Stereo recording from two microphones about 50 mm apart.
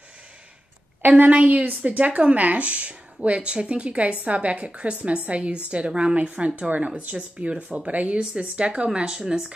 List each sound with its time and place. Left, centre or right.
1.0 s a woman's voice: right; by 9.5 s centre